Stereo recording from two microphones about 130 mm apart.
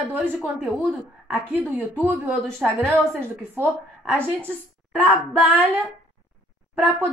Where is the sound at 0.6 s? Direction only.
10° right (ahead or behind).